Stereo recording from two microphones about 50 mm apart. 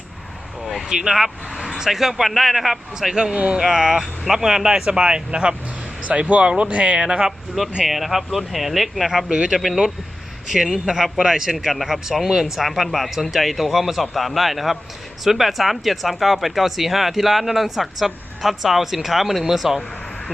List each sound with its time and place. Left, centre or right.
0.6 s vehicle: centre
0.9 s speech: centre
3.2 s speech: centre
3.6 s speech: centre
7.9 s speech: centre
9.3 s speech: centre
11.5 s speech: centre